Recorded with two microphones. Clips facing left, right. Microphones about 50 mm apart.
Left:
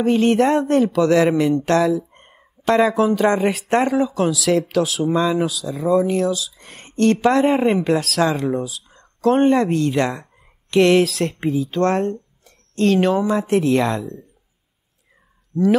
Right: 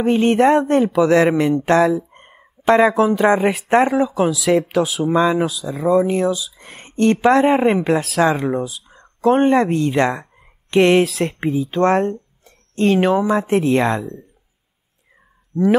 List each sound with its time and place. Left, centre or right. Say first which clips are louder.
0.0 s speech: right 1 dB; centre
2.0 s a sound: right 3 dB; centre
2.7 s speech: right 2 dB; centre
5.3 s speech: right 1 dB; centre
12.4 s speech: right 1 dB; centre
15.5 s speech: right 1 dB; centre